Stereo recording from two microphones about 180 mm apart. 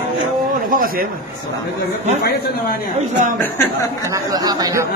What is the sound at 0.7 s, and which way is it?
Speech, 50° right (ahead or behind).